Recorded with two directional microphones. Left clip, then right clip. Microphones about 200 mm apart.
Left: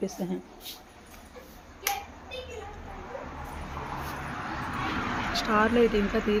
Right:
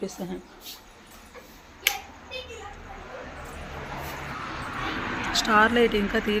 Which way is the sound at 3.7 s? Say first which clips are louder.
Even; 60° left (ahead or behind).